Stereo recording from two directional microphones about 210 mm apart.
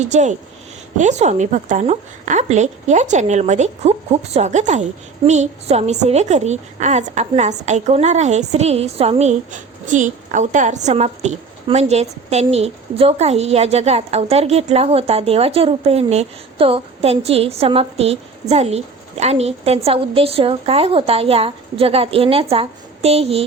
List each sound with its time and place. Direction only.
0.0 s a woman's voice: 35° right (ahead or behind)